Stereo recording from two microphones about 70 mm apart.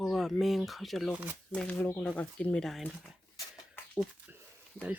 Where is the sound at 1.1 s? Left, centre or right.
Right.